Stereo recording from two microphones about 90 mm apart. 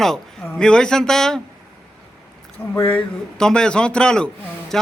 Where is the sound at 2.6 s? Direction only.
20° left (ahead or behind).